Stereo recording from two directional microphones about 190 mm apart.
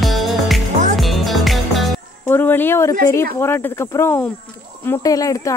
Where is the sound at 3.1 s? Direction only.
15° left (ahead or behind).